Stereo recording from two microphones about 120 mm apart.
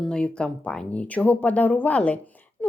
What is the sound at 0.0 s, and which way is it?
A woman's voice, 5° left (ahead or behind).